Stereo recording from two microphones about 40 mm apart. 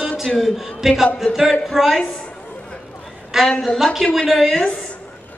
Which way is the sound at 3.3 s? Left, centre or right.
Centre.